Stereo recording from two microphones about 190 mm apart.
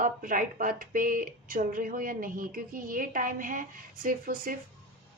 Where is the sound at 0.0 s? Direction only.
45° right (ahead or behind).